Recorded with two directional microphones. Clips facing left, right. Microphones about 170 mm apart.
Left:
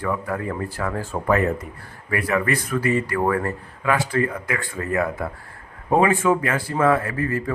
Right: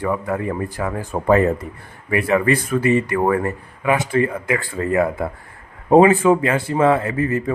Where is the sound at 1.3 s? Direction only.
30° right (ahead or behind).